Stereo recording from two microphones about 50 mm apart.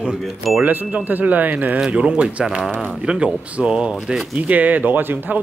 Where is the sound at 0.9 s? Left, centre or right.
Right; by 4.2 s centre.